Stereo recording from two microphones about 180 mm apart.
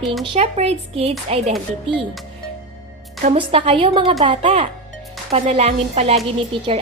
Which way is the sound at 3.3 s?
30° right (ahead or behind).